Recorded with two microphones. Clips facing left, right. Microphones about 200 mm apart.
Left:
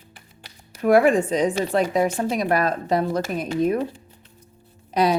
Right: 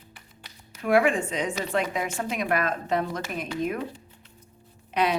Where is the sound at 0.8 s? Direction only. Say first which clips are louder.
Left 6 dB; 40° left (ahead or behind).